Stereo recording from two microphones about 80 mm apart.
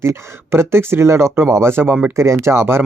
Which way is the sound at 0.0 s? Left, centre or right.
Right.